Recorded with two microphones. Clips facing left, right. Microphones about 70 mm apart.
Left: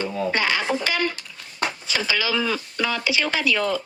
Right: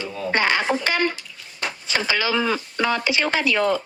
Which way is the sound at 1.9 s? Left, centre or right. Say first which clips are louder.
Right 4 dB; right.